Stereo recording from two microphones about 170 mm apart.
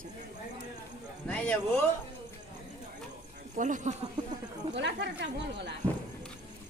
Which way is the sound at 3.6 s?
45° right (ahead or behind).